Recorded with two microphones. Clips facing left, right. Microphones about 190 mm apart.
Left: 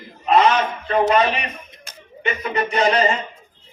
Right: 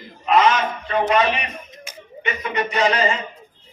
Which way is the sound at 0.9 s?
35° left (ahead or behind).